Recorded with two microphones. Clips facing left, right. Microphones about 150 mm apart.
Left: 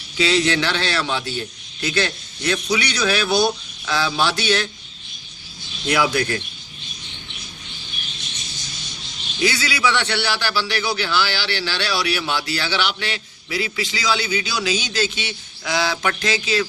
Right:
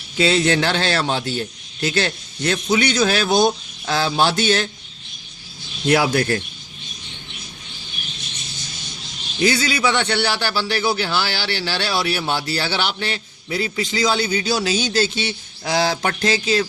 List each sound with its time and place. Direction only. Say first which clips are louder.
0.2 s a man's voice: right 2 dB; 45° right (ahead or behind)
5.9 s a man's voice: right 3 dB; 45° right (ahead or behind)
9.4 s a man's voice: right 2 dB; 45° right (ahead or behind)